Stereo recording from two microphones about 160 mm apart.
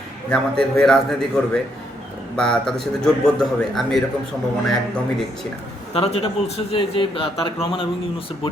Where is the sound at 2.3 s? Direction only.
5° left (ahead or behind).